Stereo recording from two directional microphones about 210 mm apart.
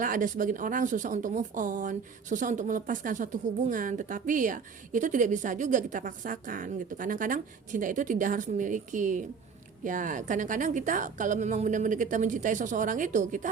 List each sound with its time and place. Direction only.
0.0 s a woman's voice: 40° right (ahead or behind)